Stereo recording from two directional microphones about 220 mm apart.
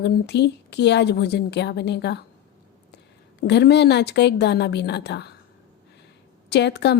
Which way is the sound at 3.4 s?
50° left (ahead or behind).